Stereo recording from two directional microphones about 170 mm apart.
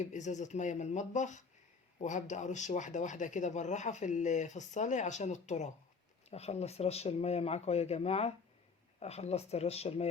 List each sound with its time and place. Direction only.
0.0 s speech: 45° left (ahead or behind)